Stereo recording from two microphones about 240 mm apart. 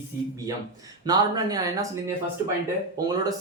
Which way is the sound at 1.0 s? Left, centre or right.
Centre.